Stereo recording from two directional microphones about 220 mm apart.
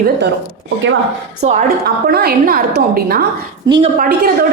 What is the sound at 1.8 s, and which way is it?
A woman's voice, 45° right (ahead or behind).